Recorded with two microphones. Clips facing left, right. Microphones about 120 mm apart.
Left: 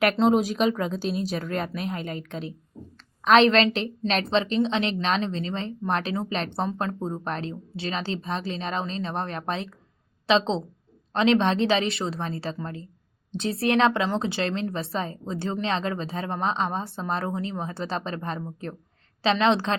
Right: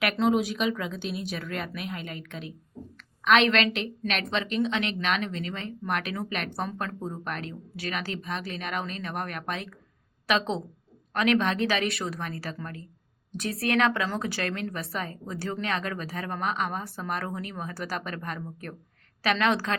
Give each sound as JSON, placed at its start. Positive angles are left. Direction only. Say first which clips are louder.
{"t": 0.0, "sound": "a woman's voice", "louder": "left 4 dB", "side_deg": 35}